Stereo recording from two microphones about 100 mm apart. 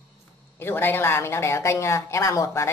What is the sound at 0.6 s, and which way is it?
A woman's voice, 20° left (ahead or behind).